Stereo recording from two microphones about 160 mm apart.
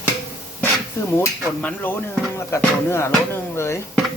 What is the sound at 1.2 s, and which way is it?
Speech, 10° left (ahead or behind).